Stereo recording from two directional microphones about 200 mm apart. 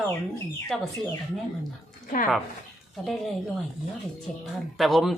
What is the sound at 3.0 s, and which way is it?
Speech, centre (ahead or behind).